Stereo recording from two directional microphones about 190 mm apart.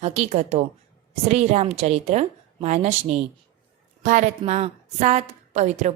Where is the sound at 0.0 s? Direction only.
35° right (ahead or behind).